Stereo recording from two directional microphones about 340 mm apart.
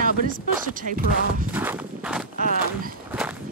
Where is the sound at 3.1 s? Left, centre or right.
Centre.